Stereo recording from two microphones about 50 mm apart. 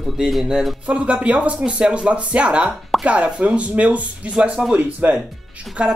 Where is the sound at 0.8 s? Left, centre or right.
Right.